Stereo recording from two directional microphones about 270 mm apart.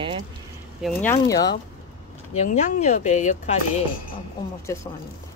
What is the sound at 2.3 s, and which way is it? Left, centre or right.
Speech, left.